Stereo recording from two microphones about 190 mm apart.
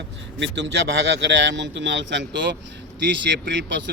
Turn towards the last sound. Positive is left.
turn(degrees=-70)  # may be behind; listen again after turning